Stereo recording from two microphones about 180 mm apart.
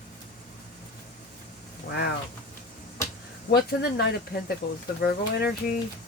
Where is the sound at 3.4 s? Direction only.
60° left (ahead or behind).